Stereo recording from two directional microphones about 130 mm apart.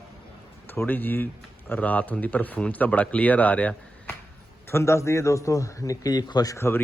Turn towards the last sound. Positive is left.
turn(degrees=20)  # may be behind; listen again after turning